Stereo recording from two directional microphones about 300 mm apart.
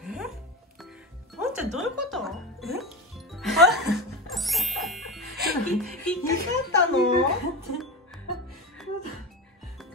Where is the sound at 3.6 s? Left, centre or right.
Right.